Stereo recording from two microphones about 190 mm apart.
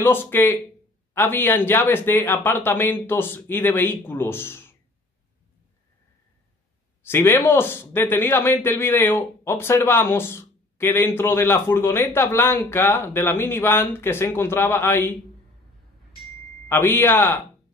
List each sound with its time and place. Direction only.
0.0 s speech: 10° left (ahead or behind)
7.0 s speech: 10° left (ahead or behind)
16.6 s speech: 10° left (ahead or behind)